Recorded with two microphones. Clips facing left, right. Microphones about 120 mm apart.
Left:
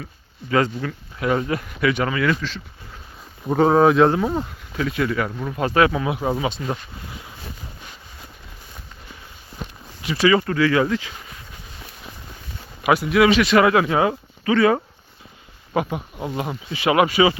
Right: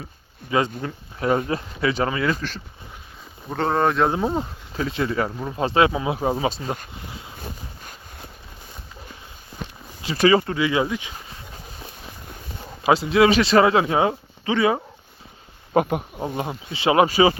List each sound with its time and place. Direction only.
0.8 s speech: 30° right (ahead or behind)
3.5 s speech: 5° left (ahead or behind)
4.1 s speech: 20° right (ahead or behind)
7.1 s boat: 25° right (ahead or behind)
10.2 s speech: 25° right (ahead or behind)
12.8 s speech: 30° right (ahead or behind)
15.7 s speech: 50° right (ahead or behind)
16.7 s speech: 30° right (ahead or behind)